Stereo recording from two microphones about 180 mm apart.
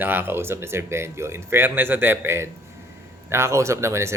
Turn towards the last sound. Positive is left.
turn(degrees=-15)  # may be behind; listen again after turning